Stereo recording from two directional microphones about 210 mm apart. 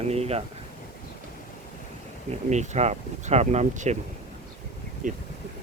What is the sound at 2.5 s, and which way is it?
Speech, 35° right (ahead or behind).